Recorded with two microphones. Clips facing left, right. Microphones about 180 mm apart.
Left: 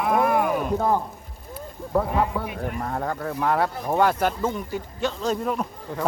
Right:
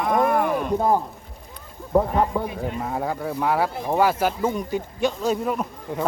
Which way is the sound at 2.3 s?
20° right (ahead or behind).